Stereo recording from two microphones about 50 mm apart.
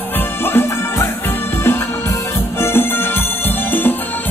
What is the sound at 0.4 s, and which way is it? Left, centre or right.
Music, left.